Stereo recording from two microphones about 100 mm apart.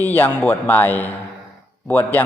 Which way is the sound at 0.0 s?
20° left (ahead or behind).